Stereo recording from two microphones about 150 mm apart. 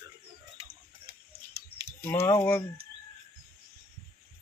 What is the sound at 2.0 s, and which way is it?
Speech, 15° left (ahead or behind).